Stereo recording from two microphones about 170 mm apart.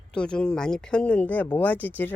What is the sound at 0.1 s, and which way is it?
Speech, 5° left (ahead or behind).